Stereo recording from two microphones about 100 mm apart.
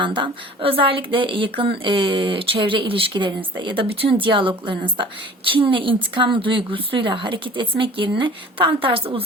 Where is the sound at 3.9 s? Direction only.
70° right (ahead or behind).